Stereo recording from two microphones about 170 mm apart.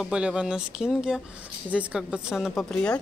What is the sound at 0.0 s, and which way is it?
A woman's voice, 5° right (ahead or behind).